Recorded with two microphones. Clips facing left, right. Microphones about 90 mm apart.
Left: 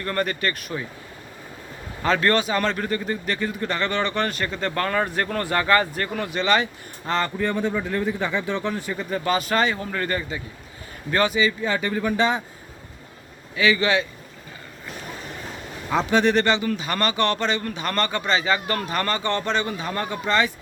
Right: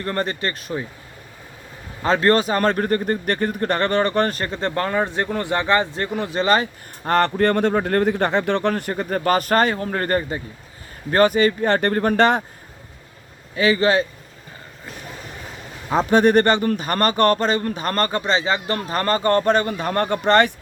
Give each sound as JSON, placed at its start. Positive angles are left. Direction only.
{"t": 0.0, "sound": "speech", "side_deg": -30}
{"t": 2.0, "sound": "a man's voice", "side_deg": -35}
{"t": 7.1, "sound": "a man's voice", "side_deg": -60}
{"t": 13.6, "sound": "a man's voice", "side_deg": -35}
{"t": 16.0, "sound": "speech", "side_deg": -45}